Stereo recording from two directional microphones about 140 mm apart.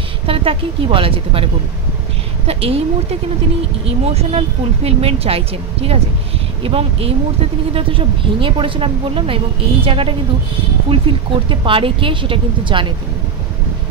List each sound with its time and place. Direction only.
0.3 s a woman's voice: 40° right (ahead or behind)